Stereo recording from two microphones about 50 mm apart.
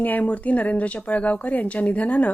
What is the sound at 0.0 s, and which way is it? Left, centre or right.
A woman's voice, left.